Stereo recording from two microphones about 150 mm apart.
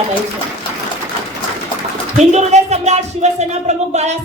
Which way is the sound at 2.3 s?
50° right (ahead or behind).